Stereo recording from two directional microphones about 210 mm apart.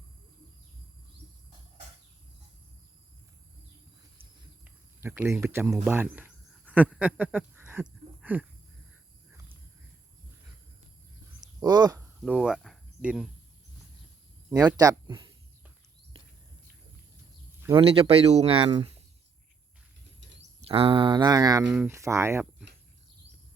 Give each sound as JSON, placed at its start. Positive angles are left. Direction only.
{"t": 4.2, "sound": "a sound", "side_deg": -10}
{"t": 11.6, "sound": "speech", "side_deg": -20}
{"t": 12.2, "sound": "a sound", "side_deg": -5}
{"t": 14.7, "sound": "speech", "side_deg": -15}
{"t": 17.7, "sound": "speech", "side_deg": -25}
{"t": 20.7, "sound": "speech", "side_deg": -25}